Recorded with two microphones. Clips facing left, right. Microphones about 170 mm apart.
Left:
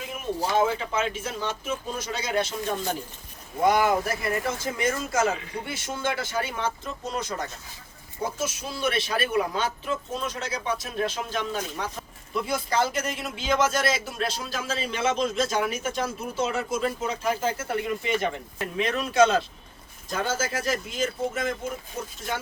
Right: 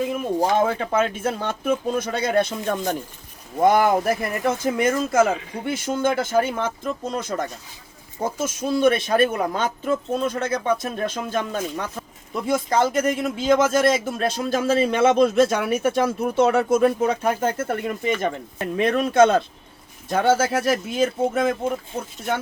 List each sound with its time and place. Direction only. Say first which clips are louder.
0.5 s a man's voice: even; 55° right (ahead or behind)